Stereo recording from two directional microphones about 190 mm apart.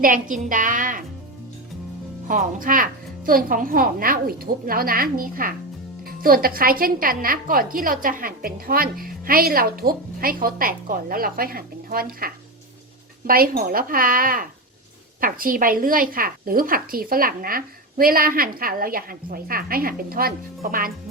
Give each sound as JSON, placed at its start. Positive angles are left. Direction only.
{"t": 0.0, "sound": "a woman's voice", "side_deg": -45}
{"t": 2.2, "sound": "a woman's voice", "side_deg": -45}